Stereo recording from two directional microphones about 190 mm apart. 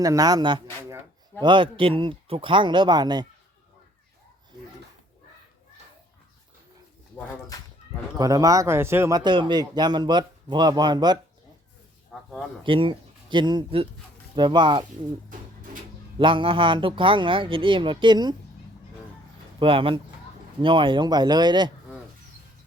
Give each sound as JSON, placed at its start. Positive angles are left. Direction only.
{"t": 0.0, "sound": "a man's voice", "side_deg": -20}
{"t": 8.2, "sound": "a man's voice", "side_deg": -20}
{"t": 12.1, "sound": "a sound", "side_deg": 0}
{"t": 12.6, "sound": "a man's voice", "side_deg": -30}
{"t": 16.1, "sound": "a man's voice", "side_deg": -25}
{"t": 19.5, "sound": "a man's voice", "side_deg": -30}